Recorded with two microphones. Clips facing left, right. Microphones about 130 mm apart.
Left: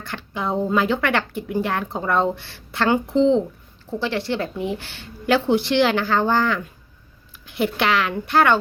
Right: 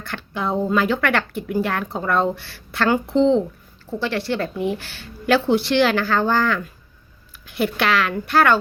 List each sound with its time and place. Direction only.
0.0 s speech: 15° left (ahead or behind)